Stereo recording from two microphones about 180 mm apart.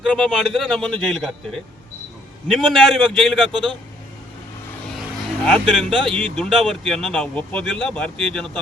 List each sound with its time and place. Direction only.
0.0 s speech: centre (ahead or behind)
2.5 s speech: centre (ahead or behind)
3.5 s a man's voice: 25° right (ahead or behind)
5.5 s speech: centre (ahead or behind)